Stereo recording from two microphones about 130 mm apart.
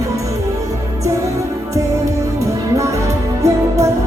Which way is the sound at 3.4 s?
25° right (ahead or behind).